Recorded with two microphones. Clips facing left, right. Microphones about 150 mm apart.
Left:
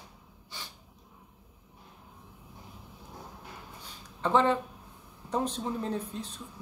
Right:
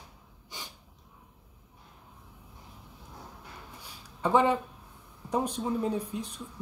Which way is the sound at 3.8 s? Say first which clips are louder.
Right 1 dB; 10° right (ahead or behind).